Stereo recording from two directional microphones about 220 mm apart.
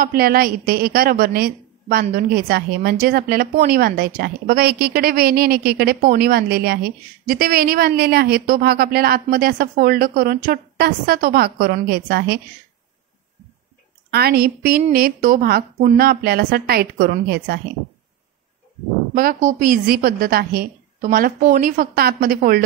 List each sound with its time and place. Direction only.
0.0 s a woman's voice: 40° right (ahead or behind)
14.1 s a woman's voice: 45° right (ahead or behind)
19.1 s a woman's voice: 40° right (ahead or behind)